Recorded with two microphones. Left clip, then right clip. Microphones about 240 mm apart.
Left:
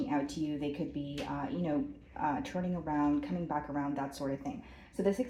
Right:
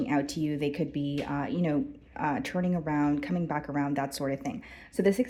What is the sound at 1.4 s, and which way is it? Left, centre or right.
Speech, right.